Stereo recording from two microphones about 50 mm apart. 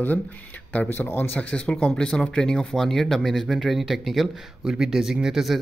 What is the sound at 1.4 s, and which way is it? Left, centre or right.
Speech, left.